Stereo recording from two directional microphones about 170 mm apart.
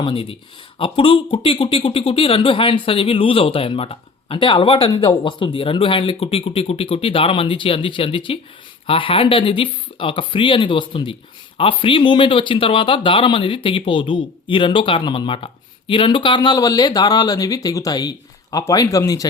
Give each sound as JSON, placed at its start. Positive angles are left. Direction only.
{"t": 0.0, "sound": "speech", "side_deg": 30}